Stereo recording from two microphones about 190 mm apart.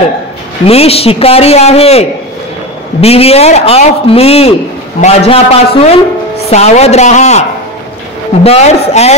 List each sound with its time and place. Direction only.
0.7 s a man's voice: 30° left (ahead or behind)
8.5 s a man's voice: 35° left (ahead or behind)